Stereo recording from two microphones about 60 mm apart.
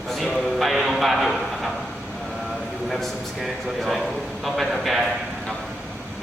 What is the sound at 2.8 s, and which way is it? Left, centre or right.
A man's voice, centre.